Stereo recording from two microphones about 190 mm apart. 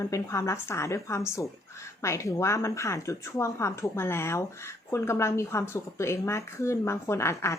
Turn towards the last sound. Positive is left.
turn(degrees=15)  # may be behind; listen again after turning